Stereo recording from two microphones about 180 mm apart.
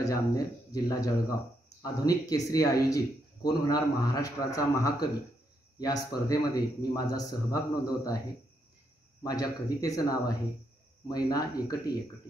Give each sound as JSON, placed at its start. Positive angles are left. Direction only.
{"t": 0.7, "sound": "speech", "side_deg": 20}
{"t": 9.2, "sound": "speech", "side_deg": 20}